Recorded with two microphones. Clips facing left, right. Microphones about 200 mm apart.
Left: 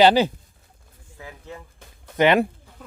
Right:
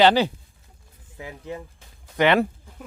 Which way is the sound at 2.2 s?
15° left (ahead or behind).